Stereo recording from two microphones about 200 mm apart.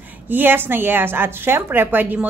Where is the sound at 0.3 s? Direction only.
10° right (ahead or behind).